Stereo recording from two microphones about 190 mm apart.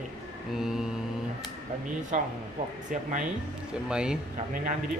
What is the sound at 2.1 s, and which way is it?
Speech, 40° right (ahead or behind).